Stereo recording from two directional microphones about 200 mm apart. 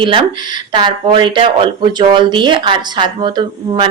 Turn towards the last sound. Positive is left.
turn(degrees=-25)  # may be behind; listen again after turning